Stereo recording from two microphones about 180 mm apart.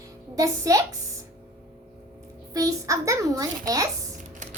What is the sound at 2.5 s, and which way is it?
Speech, 20° right (ahead or behind).